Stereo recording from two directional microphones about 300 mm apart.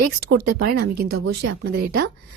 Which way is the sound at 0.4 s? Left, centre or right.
Right.